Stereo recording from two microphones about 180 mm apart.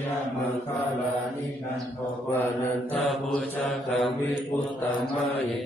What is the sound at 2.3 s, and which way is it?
Mantra, 15° left (ahead or behind).